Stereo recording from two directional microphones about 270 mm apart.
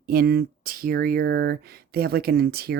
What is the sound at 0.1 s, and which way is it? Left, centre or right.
Speech, right.